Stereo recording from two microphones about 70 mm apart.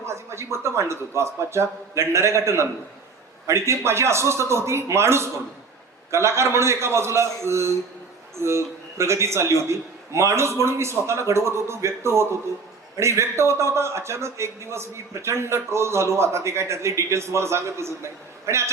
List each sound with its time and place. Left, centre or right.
0.0 s a man's voice: right